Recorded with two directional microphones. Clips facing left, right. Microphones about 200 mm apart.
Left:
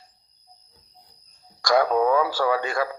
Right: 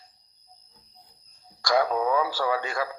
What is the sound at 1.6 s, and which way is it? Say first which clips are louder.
Radio: left 4 dB; 55° left (ahead or behind).